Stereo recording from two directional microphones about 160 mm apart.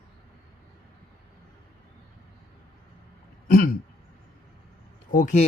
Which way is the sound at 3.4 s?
65° left (ahead or behind).